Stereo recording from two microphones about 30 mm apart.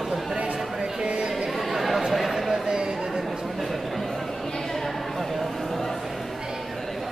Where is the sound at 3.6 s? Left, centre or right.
Centre.